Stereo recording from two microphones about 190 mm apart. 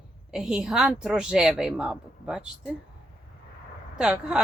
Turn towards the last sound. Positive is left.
turn(degrees=-5)  # may be behind; listen again after turning